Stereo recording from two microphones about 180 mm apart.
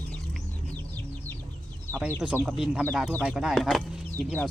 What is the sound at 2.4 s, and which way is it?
Speech, 5° right (ahead or behind).